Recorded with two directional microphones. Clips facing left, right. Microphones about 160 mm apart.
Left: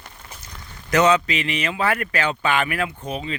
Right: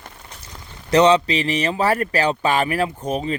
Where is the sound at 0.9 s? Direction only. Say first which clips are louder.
Right 3 dB; 30° right (ahead or behind).